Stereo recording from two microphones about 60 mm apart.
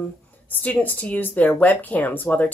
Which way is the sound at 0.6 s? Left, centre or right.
Left.